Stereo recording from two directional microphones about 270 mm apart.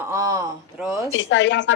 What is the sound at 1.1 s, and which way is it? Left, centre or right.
Speech, left.